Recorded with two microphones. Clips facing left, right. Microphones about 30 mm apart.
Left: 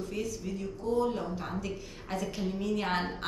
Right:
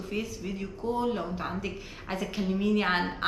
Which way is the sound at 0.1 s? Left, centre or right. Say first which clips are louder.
Right 1 dB; right.